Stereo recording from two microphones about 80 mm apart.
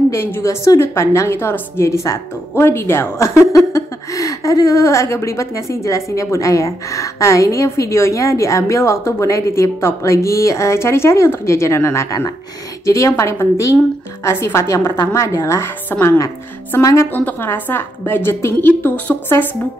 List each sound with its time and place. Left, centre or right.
0.1 s a woman's voice: left